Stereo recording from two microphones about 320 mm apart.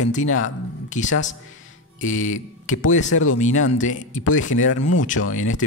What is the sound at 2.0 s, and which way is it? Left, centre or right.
Speech, left.